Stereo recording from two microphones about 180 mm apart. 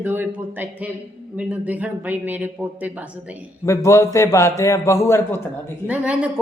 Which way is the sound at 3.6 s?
15° left (ahead or behind).